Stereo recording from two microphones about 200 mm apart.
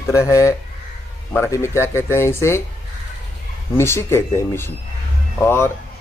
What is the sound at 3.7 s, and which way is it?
Speech, 10° left (ahead or behind).